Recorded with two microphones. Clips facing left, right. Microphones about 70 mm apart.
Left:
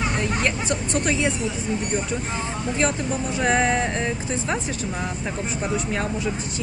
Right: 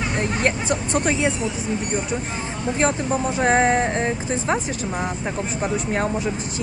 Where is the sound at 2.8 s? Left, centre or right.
Right.